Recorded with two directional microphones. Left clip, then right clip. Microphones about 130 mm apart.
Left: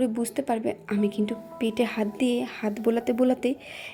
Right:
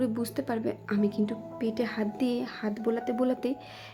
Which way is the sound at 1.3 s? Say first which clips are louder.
Left 3 dB; 25° left (ahead or behind).